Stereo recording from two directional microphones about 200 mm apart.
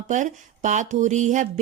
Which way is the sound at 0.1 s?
40° right (ahead or behind).